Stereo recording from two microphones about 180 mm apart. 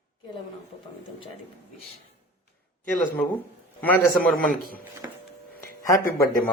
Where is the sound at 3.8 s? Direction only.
10° left (ahead or behind).